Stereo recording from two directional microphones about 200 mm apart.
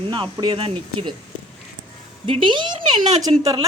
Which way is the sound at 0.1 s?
20° right (ahead or behind).